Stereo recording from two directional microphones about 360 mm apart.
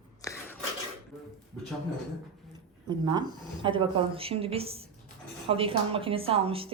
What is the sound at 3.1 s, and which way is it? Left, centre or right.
A woman's voice, centre.